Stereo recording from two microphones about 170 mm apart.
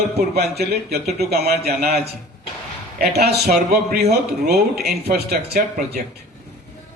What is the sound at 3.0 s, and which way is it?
A man's voice, 70° right (ahead or behind).